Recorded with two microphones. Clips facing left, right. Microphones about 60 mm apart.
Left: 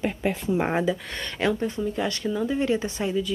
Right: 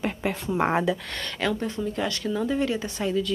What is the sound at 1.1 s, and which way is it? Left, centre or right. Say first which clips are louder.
Speech: left 2 dB; centre.